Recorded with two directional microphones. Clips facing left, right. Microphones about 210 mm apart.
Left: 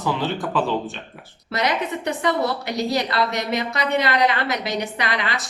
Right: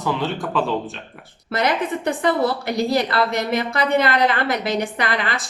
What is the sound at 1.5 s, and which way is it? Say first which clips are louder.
A woman's voice: right 2 dB; 50° right (ahead or behind).